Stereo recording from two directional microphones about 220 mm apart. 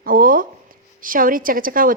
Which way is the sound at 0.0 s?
40° right (ahead or behind).